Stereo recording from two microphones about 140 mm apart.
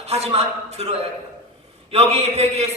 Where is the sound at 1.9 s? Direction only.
50° right (ahead or behind).